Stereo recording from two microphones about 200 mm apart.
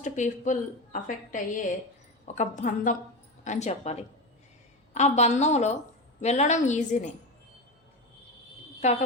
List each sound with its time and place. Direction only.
0.0 s a woman's voice: 40° left (ahead or behind)
4.9 s a woman's voice: 35° left (ahead or behind)
8.8 s speech: 35° left (ahead or behind)